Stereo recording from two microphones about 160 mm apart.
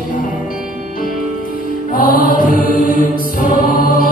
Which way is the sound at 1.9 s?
65° left (ahead or behind).